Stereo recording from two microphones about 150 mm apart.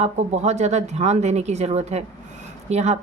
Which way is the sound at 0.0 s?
50° right (ahead or behind).